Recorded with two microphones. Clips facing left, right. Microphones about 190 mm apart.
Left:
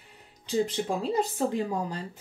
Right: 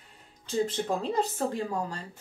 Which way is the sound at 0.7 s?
10° left (ahead or behind).